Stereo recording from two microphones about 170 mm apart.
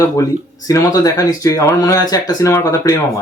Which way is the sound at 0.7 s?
20° left (ahead or behind).